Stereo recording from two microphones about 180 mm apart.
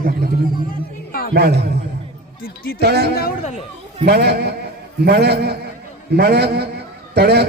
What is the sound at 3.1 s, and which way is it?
Speech, 60° left (ahead or behind).